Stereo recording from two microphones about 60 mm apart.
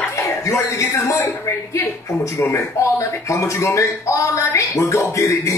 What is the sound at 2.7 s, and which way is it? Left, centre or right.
Speech, left.